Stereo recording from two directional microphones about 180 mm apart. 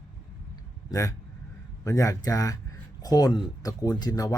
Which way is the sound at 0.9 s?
20° left (ahead or behind).